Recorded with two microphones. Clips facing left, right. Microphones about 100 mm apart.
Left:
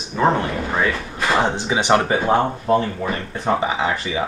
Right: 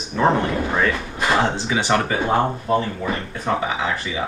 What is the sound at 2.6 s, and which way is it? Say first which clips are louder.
Speech: left 2 dB; 35° left (ahead or behind).